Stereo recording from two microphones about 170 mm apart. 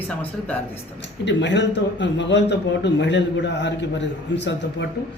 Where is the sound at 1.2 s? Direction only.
90° left.